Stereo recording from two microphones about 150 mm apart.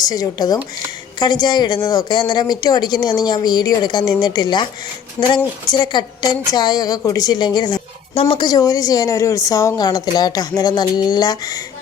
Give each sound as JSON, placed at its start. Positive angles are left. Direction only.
{"t": 0.0, "sound": "a woman's voice", "side_deg": 25}
{"t": 5.7, "sound": "a woman's voice", "side_deg": 30}